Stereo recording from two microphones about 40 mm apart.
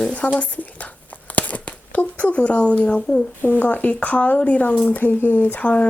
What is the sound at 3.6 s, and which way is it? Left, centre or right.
Speech, left.